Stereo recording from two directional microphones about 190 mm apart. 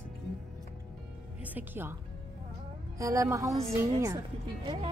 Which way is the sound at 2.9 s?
15° right (ahead or behind).